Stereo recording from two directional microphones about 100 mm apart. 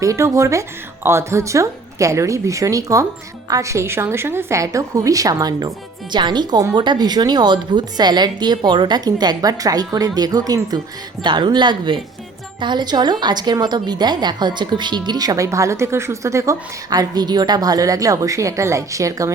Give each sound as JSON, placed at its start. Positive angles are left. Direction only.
{"t": 0.0, "sound": "a woman's voice", "side_deg": -35}
{"t": 11.2, "sound": "a woman's voice", "side_deg": -50}